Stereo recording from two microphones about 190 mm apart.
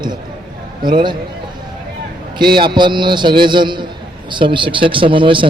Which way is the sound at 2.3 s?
25° right (ahead or behind).